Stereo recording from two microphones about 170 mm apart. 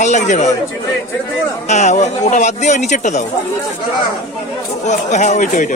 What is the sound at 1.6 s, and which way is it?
Speech, 45° left (ahead or behind).